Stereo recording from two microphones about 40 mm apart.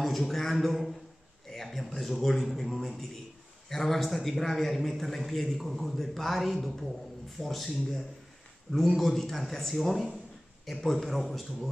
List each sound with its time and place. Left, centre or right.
0.0 s a man's voice: centre